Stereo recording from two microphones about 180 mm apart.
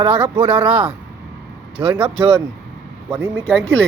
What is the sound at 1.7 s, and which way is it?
Speech, 30° right (ahead or behind).